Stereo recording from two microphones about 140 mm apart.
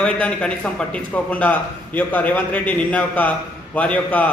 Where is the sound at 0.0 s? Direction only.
5° left (ahead or behind).